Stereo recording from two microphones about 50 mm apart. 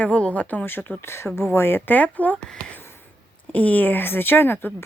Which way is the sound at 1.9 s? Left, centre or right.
Left.